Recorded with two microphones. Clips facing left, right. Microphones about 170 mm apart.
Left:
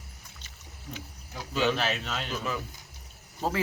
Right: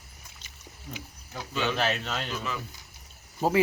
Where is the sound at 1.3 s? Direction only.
5° left (ahead or behind).